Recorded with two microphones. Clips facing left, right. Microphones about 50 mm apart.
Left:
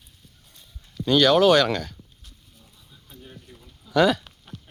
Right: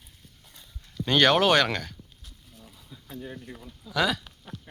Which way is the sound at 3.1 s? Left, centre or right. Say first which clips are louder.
Right 7 dB; right.